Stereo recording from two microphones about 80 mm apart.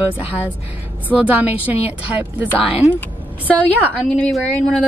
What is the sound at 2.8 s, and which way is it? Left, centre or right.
Speech, right.